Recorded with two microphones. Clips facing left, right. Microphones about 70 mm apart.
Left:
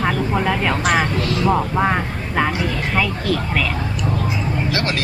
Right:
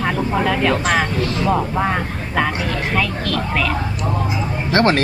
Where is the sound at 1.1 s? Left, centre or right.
Right.